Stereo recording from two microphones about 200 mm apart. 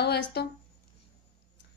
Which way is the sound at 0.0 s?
55° left (ahead or behind).